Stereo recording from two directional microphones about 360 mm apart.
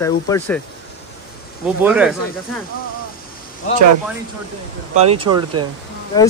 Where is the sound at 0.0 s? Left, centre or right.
Centre.